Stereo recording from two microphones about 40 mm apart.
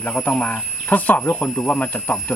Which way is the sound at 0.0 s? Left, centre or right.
Left.